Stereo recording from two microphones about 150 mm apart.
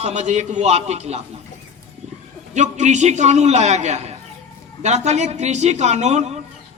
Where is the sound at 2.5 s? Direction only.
50° right (ahead or behind).